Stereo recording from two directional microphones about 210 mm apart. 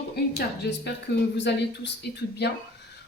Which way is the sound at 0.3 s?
50° left (ahead or behind).